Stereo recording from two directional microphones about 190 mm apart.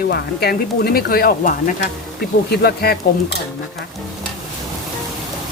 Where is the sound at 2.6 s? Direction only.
55° left (ahead or behind).